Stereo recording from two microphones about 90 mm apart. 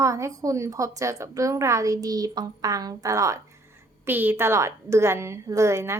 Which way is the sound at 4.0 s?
20° right (ahead or behind).